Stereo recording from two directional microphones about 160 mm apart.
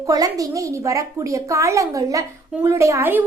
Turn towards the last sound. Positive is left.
turn(degrees=-15)  # may be behind; listen again after turning